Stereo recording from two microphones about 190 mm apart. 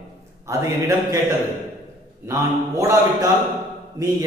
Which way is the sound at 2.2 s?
15° right (ahead or behind).